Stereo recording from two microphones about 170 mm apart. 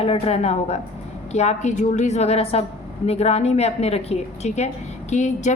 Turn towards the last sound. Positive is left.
turn(degrees=45)  # may be behind; listen again after turning